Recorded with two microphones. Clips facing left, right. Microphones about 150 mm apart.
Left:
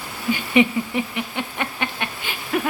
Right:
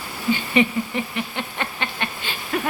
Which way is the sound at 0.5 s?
15° left (ahead or behind).